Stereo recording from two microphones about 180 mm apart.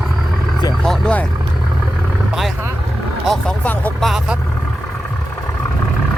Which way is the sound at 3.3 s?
5° left (ahead or behind).